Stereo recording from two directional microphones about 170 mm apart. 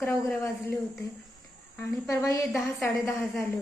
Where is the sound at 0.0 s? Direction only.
10° left (ahead or behind).